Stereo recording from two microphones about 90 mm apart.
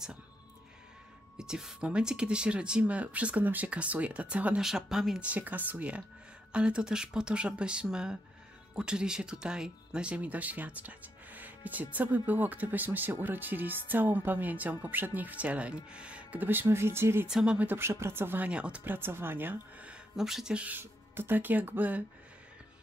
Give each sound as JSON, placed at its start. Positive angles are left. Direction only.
{"t": 1.4, "sound": "speech", "side_deg": -5}
{"t": 5.3, "sound": "speech", "side_deg": -20}
{"t": 17.3, "sound": "speech", "side_deg": -10}
{"t": 20.2, "sound": "speech", "side_deg": -5}
{"t": 20.8, "sound": "speech", "side_deg": -25}